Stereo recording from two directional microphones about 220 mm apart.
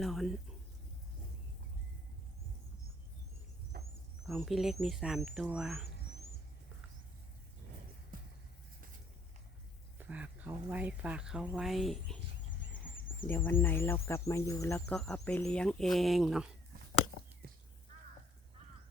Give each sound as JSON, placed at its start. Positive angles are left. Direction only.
{"t": 0.0, "sound": "speech", "side_deg": 0}
{"t": 4.2, "sound": "speech", "side_deg": 0}
{"t": 8.1, "sound": "vehicle", "side_deg": -40}
{"t": 10.0, "sound": "speech", "side_deg": -5}
{"t": 12.5, "sound": "fowl", "side_deg": 35}
{"t": 13.2, "sound": "speech", "side_deg": 10}
{"t": 14.8, "sound": "speech", "side_deg": 0}